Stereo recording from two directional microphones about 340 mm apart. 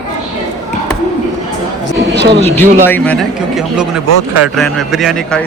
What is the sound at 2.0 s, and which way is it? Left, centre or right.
Speech, right.